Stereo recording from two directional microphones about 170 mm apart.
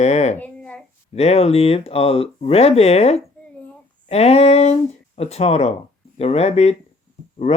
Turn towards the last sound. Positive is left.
turn(degrees=40)  # may be behind; listen again after turning